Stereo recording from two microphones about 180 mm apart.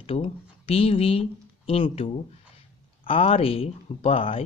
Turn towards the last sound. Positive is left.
turn(degrees=30)  # may be behind; listen again after turning